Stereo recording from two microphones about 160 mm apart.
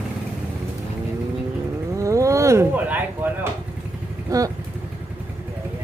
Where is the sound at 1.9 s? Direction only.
20° right (ahead or behind).